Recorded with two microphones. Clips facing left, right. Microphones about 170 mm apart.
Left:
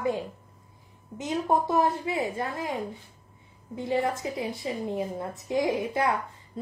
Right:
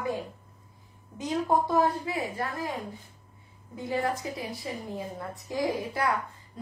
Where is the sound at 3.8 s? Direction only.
25° left (ahead or behind).